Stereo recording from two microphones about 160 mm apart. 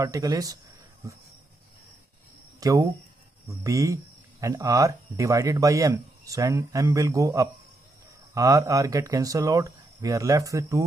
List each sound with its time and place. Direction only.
0.0 s speech: 20° right (ahead or behind)
2.6 s speech: 20° right (ahead or behind)